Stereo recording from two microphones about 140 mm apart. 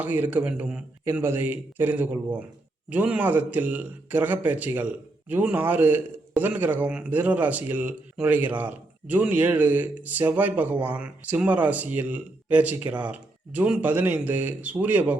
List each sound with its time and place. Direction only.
0.0 s speech: 10° right (ahead or behind)